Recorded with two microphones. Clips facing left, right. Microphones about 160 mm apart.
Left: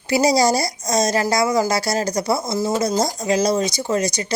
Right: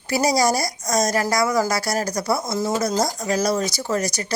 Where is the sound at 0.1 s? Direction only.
25° left (ahead or behind).